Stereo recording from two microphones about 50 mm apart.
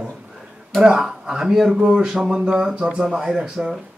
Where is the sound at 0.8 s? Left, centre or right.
Centre.